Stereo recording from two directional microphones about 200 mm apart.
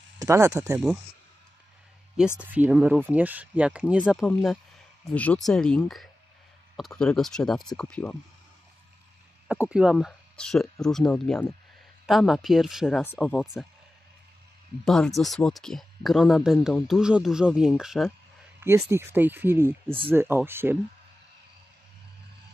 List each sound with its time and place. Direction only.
0.2 s speech: 15° right (ahead or behind)
2.4 s speech: 10° right (ahead or behind); by 8.2 s 5° left (ahead or behind)
9.5 s speech: 5° right (ahead or behind)
14.9 s speech: centre (ahead or behind)